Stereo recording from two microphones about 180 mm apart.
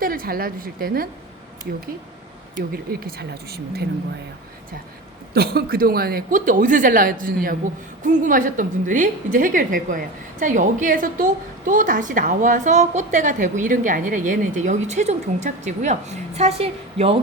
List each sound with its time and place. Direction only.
0.0 s a woman's voice: 55° right (ahead or behind)
2.6 s speech: 55° right (ahead or behind)
5.3 s a woman's voice: 60° right (ahead or behind); by 17.2 s 35° right (ahead or behind)